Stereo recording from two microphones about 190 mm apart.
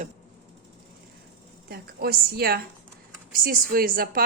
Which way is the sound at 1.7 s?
55° right (ahead or behind).